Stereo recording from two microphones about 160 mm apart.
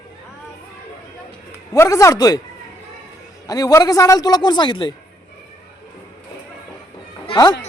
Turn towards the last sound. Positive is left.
turn(degrees=25)  # may be behind; listen again after turning